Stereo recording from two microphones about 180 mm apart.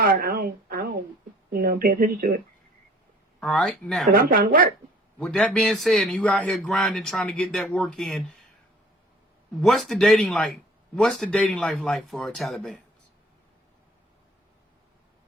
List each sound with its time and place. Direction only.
0.0 s a sound: 55° right (ahead or behind)
1.5 s a woman's voice: 55° right (ahead or behind)
3.4 s speech: centre (ahead or behind)
4.1 s speech: 55° right (ahead or behind)
5.2 s speech: 5° left (ahead or behind)
9.6 s speech: centre (ahead or behind)